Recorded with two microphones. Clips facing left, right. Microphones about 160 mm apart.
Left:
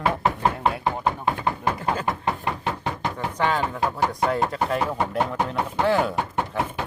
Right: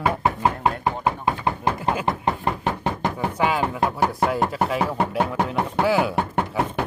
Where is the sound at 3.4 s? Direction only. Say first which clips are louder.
Right 1 dB; 10° right (ahead or behind).